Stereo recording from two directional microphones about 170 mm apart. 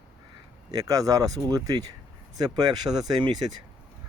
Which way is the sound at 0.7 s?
20° right (ahead or behind).